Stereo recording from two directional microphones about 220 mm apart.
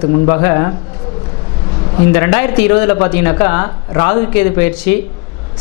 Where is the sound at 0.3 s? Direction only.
20° left (ahead or behind).